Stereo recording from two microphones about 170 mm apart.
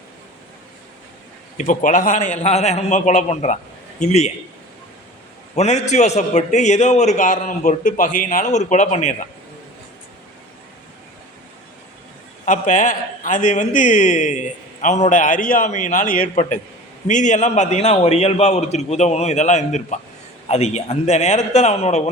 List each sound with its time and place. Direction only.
1.5 s a man's voice: 50° left (ahead or behind)
5.5 s a man's voice: 40° left (ahead or behind)
12.5 s a man's voice: 50° left (ahead or behind)